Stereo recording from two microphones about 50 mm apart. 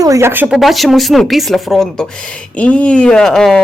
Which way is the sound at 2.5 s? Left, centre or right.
Left.